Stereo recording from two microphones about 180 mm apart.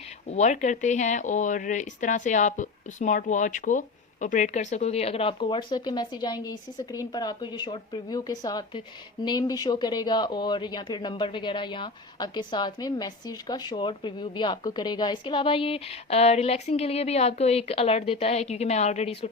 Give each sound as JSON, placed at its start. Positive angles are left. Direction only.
{"t": 0.3, "sound": "speech", "side_deg": 40}